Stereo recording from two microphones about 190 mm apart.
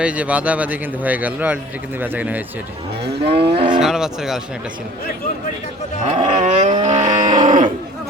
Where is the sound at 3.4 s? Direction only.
30° right (ahead or behind).